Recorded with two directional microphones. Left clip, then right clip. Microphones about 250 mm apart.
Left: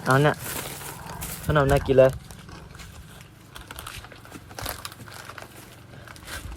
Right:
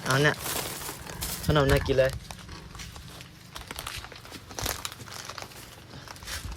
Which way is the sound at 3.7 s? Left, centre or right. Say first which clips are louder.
Right 1 dB; right.